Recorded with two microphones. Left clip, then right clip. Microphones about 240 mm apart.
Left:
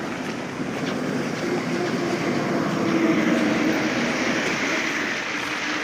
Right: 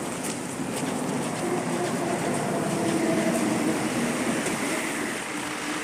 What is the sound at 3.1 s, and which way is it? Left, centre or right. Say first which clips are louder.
Vehicle: left 4 dB; right.